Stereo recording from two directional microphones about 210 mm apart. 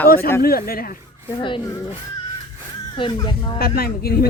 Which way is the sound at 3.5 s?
45° left (ahead or behind).